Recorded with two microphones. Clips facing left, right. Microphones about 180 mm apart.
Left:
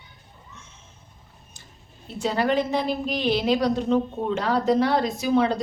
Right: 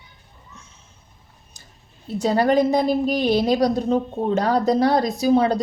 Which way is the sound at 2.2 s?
40° right (ahead or behind).